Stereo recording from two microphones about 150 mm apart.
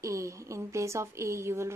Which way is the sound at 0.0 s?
20° right (ahead or behind).